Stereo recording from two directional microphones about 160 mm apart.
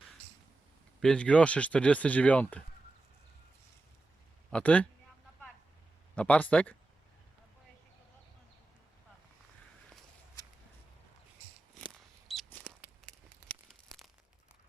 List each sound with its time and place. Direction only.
1.0 s speech: 5° left (ahead or behind)
4.5 s speech: 10° left (ahead or behind)
6.1 s speech: 10° left (ahead or behind)
10.4 s a sound: 25° left (ahead or behind)
11.8 s mouse: centre (ahead or behind)
13.5 s tearing: centre (ahead or behind)